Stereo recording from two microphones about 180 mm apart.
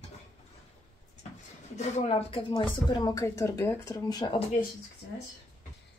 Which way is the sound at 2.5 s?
25° left (ahead or behind).